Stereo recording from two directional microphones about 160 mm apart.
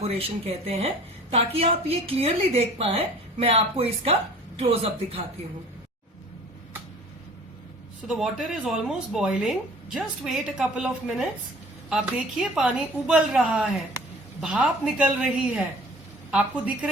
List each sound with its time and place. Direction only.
0.0 s a woman's voice: 40° right (ahead or behind)
8.0 s speech: centre (ahead or behind)